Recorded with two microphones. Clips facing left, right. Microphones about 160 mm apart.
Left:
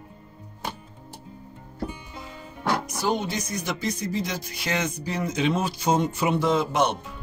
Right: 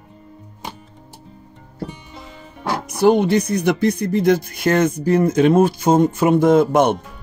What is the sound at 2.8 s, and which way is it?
Speech, 60° right (ahead or behind).